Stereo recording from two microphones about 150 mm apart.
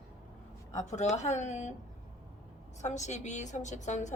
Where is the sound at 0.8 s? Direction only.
55° left (ahead or behind).